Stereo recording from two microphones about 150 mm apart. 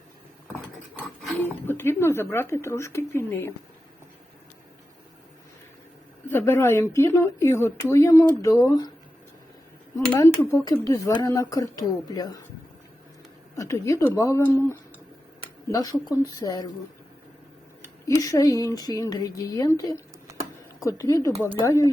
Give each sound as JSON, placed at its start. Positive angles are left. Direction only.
{"t": 0.4, "sound": "cutlery", "side_deg": 0}
{"t": 1.6, "sound": "speech", "side_deg": 15}
{"t": 6.2, "sound": "a woman's voice", "side_deg": 15}
{"t": 10.2, "sound": "a woman's voice", "side_deg": 15}
{"t": 13.6, "sound": "a woman's voice", "side_deg": 20}
{"t": 18.0, "sound": "a woman's voice", "side_deg": 20}